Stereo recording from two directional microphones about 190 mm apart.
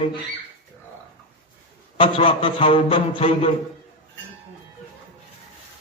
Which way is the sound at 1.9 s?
25° left (ahead or behind).